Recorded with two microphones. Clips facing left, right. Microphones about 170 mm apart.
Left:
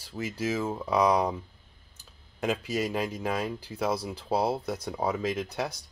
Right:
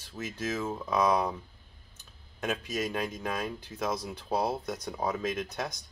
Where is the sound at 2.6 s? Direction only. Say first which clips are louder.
Left 3 dB; 35° left (ahead or behind).